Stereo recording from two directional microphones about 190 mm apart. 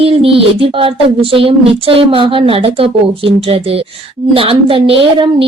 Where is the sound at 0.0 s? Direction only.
30° right (ahead or behind).